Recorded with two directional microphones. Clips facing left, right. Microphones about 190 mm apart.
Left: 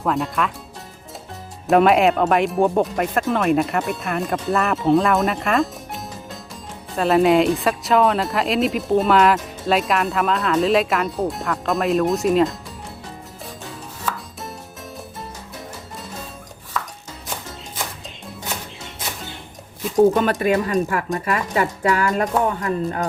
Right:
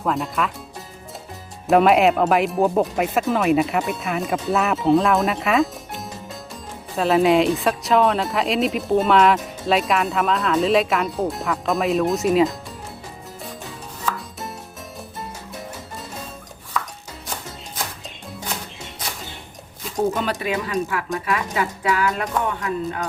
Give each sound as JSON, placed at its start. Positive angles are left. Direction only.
{"t": 0.0, "sound": "speech", "side_deg": 0}
{"t": 1.6, "sound": "speech", "side_deg": 0}
{"t": 14.0, "sound": "chopping", "side_deg": 0}
{"t": 20.1, "sound": "speech", "side_deg": 50}